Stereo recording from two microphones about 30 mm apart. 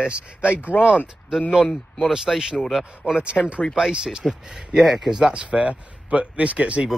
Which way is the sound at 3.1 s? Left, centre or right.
Right.